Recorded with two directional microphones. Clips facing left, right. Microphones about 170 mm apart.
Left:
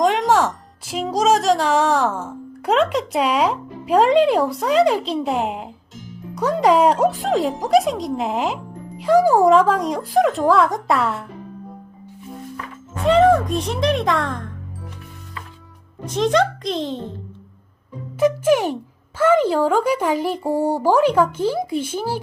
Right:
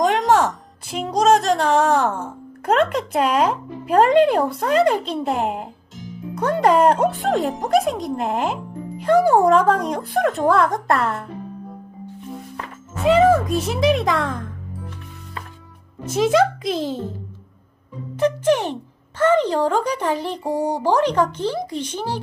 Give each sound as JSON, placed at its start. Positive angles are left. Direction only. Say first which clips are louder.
{"t": 0.0, "sound": "speech", "louder": "even", "side_deg": 0}
{"t": 13.0, "sound": "speech", "louder": "even", "side_deg": -5}
{"t": 16.1, "sound": "speech", "louder": "right 1 dB", "side_deg": -5}
{"t": 18.2, "sound": "speech", "louder": "left 2 dB", "side_deg": 10}
{"t": 20.4, "sound": "speech", "louder": "left 1 dB", "side_deg": -15}
{"t": 20.8, "sound": "speech", "louder": "left 2 dB", "side_deg": 10}